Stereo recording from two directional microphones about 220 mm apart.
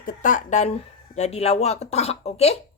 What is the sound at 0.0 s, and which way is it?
A woman's voice, 35° left (ahead or behind).